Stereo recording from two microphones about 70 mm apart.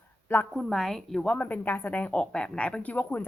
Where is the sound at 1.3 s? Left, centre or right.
Left.